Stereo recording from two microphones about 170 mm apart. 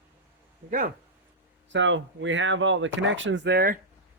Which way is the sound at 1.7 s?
90° right.